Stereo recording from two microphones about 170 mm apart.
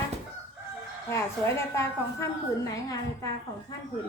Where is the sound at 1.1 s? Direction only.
15° left (ahead or behind).